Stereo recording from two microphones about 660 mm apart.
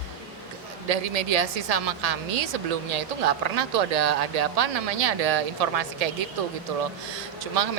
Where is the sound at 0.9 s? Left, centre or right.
Right.